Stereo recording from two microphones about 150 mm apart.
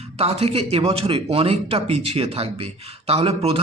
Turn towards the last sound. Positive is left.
turn(degrees=-40)  # may be behind; listen again after turning